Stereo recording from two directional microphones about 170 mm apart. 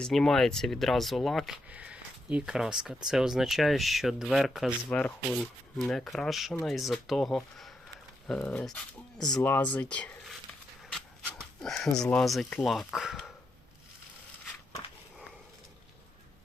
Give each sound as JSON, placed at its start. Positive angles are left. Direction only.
{"t": 0.0, "sound": "speech", "side_deg": 5}
{"t": 11.6, "sound": "speech", "side_deg": 5}